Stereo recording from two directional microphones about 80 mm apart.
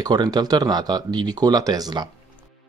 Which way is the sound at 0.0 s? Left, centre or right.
Right.